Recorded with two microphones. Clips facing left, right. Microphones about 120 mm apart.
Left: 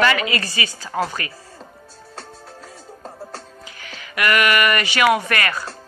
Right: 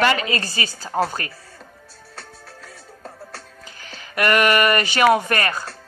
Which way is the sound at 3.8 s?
40° right (ahead or behind).